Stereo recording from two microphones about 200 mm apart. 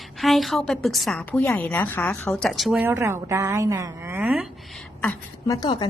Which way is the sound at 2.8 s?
15° right (ahead or behind).